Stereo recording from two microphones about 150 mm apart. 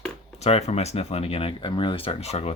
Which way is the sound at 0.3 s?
45° left (ahead or behind).